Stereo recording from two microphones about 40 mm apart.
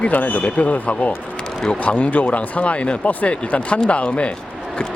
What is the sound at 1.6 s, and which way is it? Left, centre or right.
Speech, left.